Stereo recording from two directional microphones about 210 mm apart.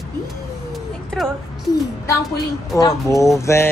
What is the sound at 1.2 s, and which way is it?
Speech, centre (ahead or behind).